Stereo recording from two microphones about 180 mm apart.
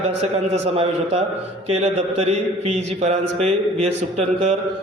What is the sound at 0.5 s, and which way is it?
A man's voice, 35° right (ahead or behind).